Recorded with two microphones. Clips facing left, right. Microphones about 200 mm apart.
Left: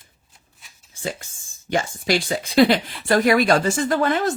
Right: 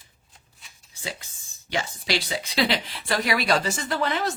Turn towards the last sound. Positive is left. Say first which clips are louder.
# left 6 dB
turn(degrees=50)  # may be behind; listen again after turning